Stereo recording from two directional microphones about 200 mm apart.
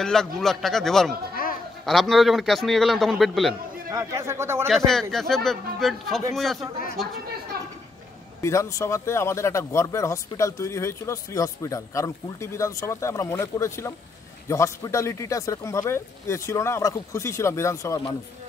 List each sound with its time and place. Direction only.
0.0 s a man's voice: centre (ahead or behind)
1.3 s a sound: 45° left (ahead or behind)
1.9 s a man's voice: centre (ahead or behind)
3.9 s speech: 15° right (ahead or behind)
4.6 s a man's voice: centre (ahead or behind)
8.4 s speech: 15° left (ahead or behind)